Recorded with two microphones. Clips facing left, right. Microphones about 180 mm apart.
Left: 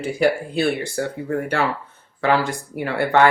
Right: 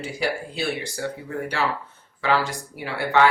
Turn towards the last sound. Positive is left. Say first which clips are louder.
# left 3 dB
turn(degrees=55)  # may be behind; listen again after turning